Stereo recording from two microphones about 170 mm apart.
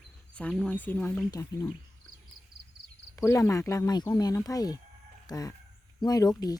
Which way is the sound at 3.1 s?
20° left (ahead or behind).